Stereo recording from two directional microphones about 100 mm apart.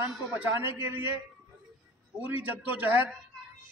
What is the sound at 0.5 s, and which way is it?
Speech, 20° right (ahead or behind).